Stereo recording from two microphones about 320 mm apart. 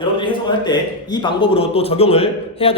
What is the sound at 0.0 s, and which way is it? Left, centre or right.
A man's voice, centre.